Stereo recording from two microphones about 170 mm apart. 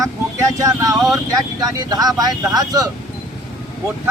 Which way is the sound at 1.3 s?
20° right (ahead or behind).